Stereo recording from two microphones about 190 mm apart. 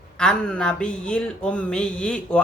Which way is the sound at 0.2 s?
5° left (ahead or behind).